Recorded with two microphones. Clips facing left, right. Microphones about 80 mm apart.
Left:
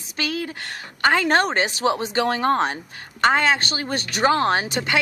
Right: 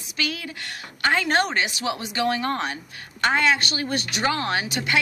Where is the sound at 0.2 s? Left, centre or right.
Left.